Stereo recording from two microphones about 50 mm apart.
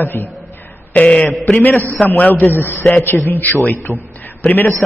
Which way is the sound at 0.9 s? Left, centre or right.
Left.